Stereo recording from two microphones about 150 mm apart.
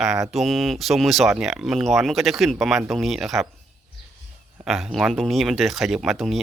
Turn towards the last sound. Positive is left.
turn(degrees=0)  # may be behind; listen again after turning